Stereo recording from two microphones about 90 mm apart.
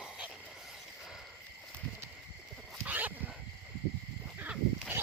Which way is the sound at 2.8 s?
20° right (ahead or behind).